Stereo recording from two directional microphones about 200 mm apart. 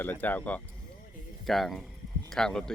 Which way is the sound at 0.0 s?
10° left (ahead or behind).